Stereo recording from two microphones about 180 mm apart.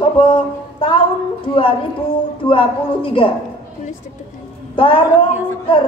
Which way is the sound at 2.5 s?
30° left (ahead or behind).